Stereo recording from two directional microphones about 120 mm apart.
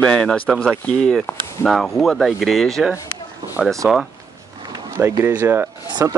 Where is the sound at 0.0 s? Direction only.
5° left (ahead or behind).